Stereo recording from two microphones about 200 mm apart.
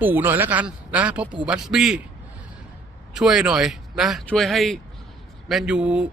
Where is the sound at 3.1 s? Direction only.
Centre (ahead or behind).